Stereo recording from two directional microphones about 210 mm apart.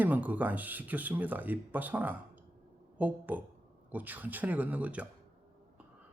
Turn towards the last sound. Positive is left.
turn(degrees=-5)  # may be behind; listen again after turning